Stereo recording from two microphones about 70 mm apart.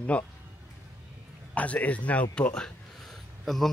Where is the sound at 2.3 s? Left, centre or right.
Centre.